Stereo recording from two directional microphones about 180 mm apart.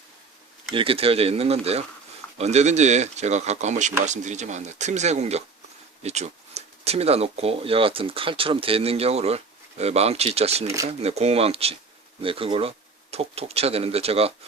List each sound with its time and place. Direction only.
0.7 s speech: 30° right (ahead or behind)